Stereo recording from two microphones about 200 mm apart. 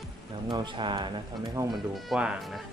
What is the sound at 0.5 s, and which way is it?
Speech, 25° right (ahead or behind).